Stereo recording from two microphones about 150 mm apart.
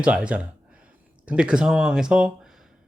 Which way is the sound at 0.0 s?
10° right (ahead or behind).